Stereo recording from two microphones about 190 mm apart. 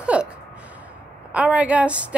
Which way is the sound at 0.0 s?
5° right (ahead or behind).